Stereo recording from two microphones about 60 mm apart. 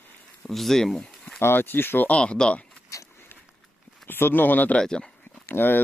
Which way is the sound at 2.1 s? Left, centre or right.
Centre.